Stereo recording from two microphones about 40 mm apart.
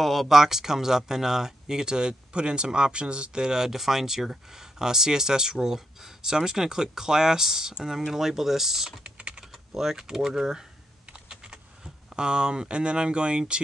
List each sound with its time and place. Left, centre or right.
0.0 s speech: centre
9.0 s typing: right
9.4 s speech: centre
11.1 s computer keyboard: right